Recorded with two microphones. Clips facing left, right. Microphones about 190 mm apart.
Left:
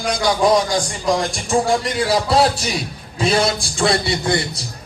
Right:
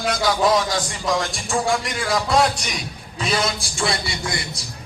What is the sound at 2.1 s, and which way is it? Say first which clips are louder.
A man's voice: left 2 dB; 30° left (ahead or behind).